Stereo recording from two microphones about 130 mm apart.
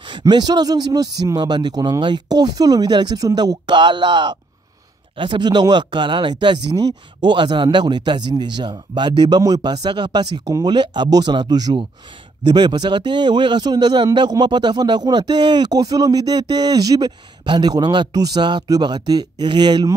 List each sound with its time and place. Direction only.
0.1 s a man's voice: 35° right (ahead or behind)